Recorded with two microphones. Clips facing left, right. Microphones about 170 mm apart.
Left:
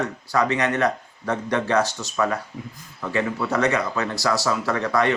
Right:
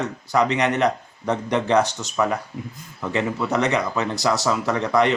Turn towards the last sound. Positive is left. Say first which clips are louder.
# right 2 dB
turn(degrees=-20)  # may be behind; listen again after turning